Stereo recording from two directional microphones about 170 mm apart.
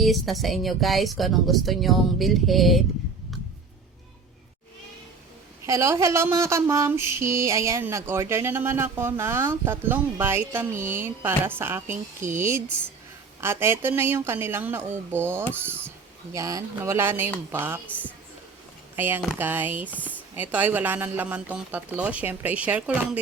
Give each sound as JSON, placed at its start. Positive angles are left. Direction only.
{"t": 0.0, "sound": "speech", "side_deg": 0}
{"t": 5.6, "sound": "mantra", "side_deg": -15}